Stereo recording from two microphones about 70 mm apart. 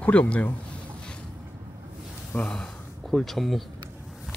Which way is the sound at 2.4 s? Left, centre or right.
Centre.